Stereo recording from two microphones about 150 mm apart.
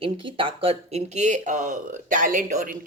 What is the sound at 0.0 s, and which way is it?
Speech, 35° right (ahead or behind).